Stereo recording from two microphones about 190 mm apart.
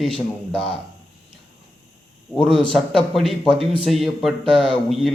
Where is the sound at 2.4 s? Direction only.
25° right (ahead or behind).